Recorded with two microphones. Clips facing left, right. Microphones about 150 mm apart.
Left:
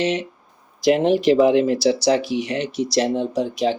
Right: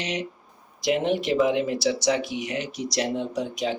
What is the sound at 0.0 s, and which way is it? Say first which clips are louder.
Speech: left 8 dB; 15° right (ahead or behind).